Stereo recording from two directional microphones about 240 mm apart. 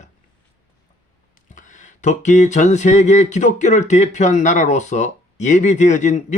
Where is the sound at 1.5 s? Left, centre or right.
Left.